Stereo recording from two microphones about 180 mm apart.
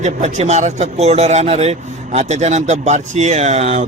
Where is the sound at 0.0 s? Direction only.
40° right (ahead or behind).